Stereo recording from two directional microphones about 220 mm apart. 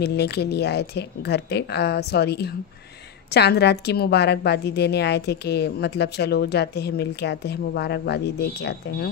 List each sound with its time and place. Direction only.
0.0 s a woman's voice: 50° left (ahead or behind)